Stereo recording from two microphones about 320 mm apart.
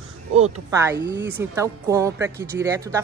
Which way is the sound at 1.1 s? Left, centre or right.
Centre.